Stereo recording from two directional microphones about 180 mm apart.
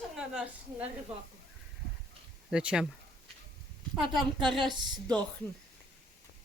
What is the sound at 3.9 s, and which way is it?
A woman's voice, centre (ahead or behind).